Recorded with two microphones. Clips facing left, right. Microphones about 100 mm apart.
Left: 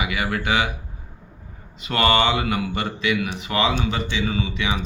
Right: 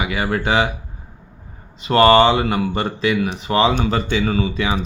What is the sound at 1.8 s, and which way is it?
Speech, 35° right (ahead or behind).